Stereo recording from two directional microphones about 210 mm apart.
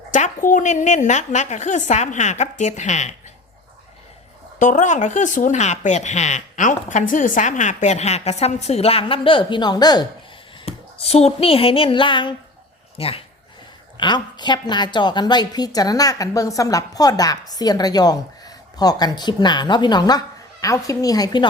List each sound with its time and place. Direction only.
0.1 s a woman's voice: 35° left (ahead or behind)
4.6 s a woman's voice: 35° left (ahead or behind); by 21.4 s 15° left (ahead or behind)